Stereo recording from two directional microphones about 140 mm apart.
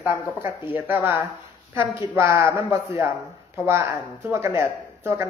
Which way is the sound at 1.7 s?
20° right (ahead or behind).